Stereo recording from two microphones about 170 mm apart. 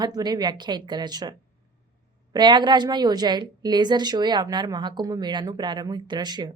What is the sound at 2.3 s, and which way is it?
Speech, 25° right (ahead or behind).